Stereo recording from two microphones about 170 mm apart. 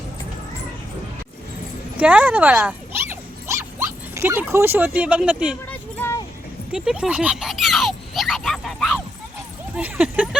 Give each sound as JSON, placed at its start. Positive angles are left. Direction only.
{"t": 2.0, "sound": "dog", "side_deg": -10}
{"t": 6.0, "sound": "vehicle", "side_deg": 15}
{"t": 6.7, "sound": "a sound", "side_deg": -5}
{"t": 9.7, "sound": "speech", "side_deg": -5}